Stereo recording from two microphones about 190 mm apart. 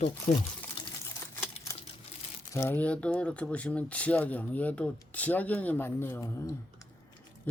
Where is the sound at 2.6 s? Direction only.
10° left (ahead or behind).